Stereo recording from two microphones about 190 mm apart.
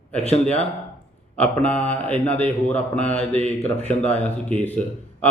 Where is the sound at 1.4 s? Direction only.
10° left (ahead or behind).